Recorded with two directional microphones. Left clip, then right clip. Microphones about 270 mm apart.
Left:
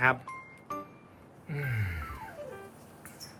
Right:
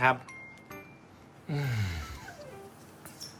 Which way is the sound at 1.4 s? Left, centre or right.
Right.